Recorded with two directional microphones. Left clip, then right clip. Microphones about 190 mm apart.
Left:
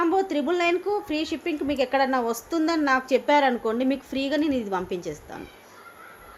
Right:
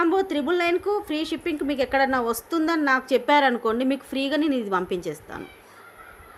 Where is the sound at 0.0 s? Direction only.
10° right (ahead or behind).